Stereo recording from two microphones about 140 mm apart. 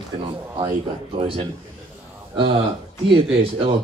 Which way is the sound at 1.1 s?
40° right (ahead or behind).